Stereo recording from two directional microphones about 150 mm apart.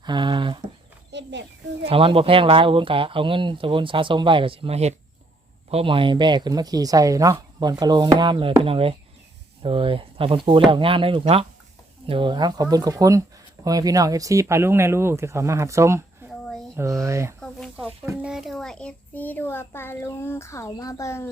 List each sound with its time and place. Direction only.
0.0 s a sound: 30° right (ahead or behind)
1.8 s speech: 40° right (ahead or behind); by 17.3 s 20° right (ahead or behind)
18.2 s a child's voice: 5° right (ahead or behind); by 21.2 s 20° left (ahead or behind)